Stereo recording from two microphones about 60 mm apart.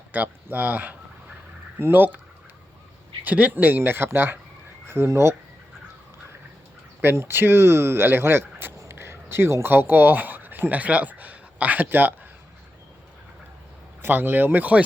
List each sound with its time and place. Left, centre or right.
0.1 s speech: right
3.2 s speech: right
4.9 s speech: right
7.2 s speech: right
8.8 s a sound: right
9.7 s speech: right
14.0 s speech: right